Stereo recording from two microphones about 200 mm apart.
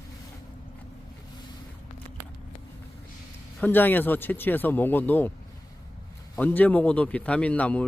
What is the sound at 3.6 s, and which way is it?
A man's voice, 10° left (ahead or behind).